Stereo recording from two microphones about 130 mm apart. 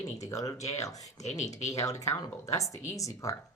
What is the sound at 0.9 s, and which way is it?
Speech, 60° left (ahead or behind).